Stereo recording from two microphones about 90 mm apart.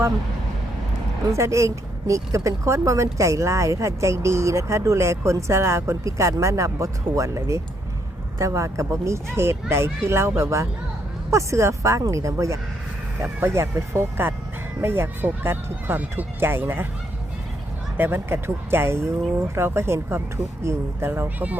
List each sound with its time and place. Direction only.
1.2 s speech: 35° right (ahead or behind)
17.9 s speech: 25° right (ahead or behind)